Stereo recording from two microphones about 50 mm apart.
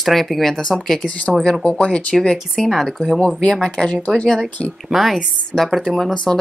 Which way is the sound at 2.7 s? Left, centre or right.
Centre.